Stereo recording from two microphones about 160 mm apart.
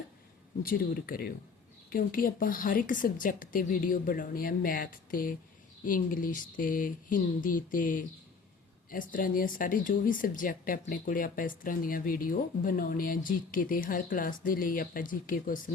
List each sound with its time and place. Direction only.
0.6 s speech: 65° left (ahead or behind)